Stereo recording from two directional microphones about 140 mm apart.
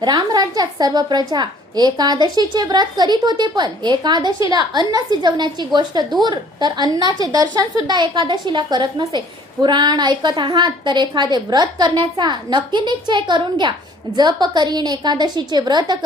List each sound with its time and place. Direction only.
0.0 s a woman's voice: 30° right (ahead or behind)